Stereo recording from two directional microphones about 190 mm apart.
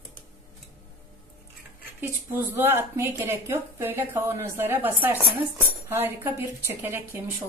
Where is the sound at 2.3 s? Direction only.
10° right (ahead or behind).